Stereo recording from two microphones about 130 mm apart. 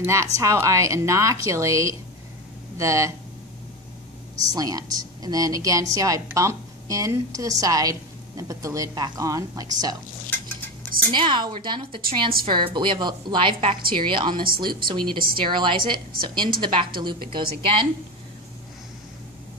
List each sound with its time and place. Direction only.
0.0 s a woman's voice: 20° right (ahead or behind)
4.5 s a woman's voice: 30° right (ahead or behind)
11.1 s a woman's voice: 35° right (ahead or behind)